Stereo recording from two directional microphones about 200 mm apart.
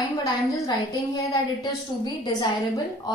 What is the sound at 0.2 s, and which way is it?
A woman's voice, 20° left (ahead or behind).